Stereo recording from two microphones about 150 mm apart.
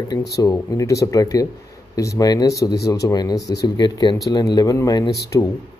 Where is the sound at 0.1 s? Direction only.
25° left (ahead or behind).